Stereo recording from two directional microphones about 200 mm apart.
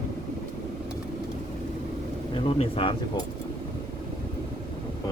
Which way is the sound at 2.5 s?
25° left (ahead or behind).